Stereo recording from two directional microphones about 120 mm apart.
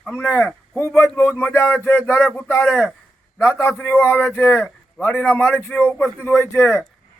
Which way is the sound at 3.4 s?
20° left (ahead or behind).